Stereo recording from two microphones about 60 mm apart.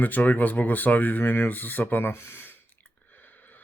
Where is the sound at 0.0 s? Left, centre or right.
Left.